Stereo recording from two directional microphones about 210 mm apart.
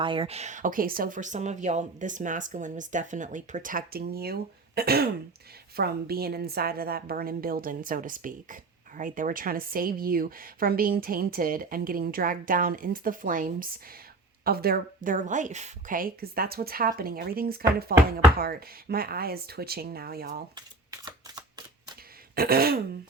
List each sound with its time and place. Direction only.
0.0 s speech: 25° right (ahead or behind); by 20.4 s 45° right (ahead or behind)
20.6 s shuffling cards: 20° right (ahead or behind)
22.4 s speech: 45° right (ahead or behind)